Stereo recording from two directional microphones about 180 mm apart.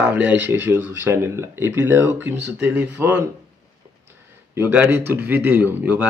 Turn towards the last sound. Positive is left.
turn(degrees=-10)  # may be behind; listen again after turning